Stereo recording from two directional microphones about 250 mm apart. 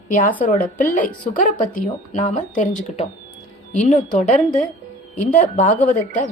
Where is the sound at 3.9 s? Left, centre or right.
Left.